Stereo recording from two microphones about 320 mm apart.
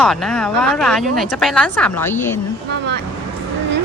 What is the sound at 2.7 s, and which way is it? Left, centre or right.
Vehicle, right.